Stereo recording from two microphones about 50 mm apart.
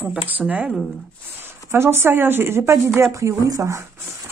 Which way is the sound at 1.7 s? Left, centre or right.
Right.